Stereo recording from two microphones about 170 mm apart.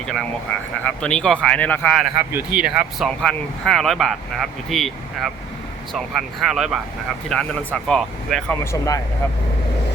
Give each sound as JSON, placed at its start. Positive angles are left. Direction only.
{"t": 0.9, "sound": "speech", "side_deg": 5}
{"t": 8.7, "sound": "speech", "side_deg": 15}